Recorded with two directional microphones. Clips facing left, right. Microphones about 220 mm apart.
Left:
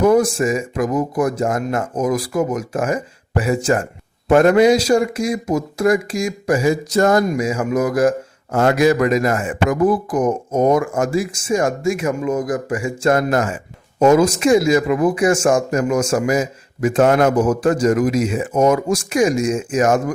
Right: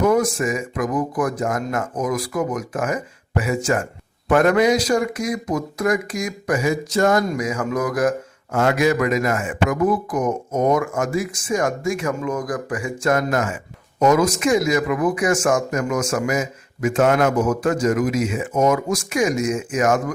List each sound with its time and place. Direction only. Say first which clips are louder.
0.0 s speech: left 4 dB; 30° left (ahead or behind)
7.3 s speech: left 4 dB; 25° left (ahead or behind)